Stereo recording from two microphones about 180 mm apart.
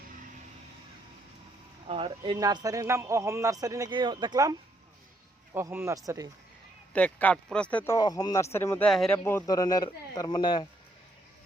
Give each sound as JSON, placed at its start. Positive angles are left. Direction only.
{"t": 1.9, "sound": "speech", "side_deg": -30}
{"t": 5.5, "sound": "a man's voice", "side_deg": -15}
{"t": 6.9, "sound": "speech", "side_deg": 10}
{"t": 7.9, "sound": "a man's voice", "side_deg": 20}
{"t": 9.1, "sound": "a man's voice", "side_deg": 15}